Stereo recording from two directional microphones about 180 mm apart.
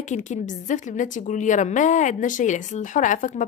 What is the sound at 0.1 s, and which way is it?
A woman's voice, 45° left (ahead or behind).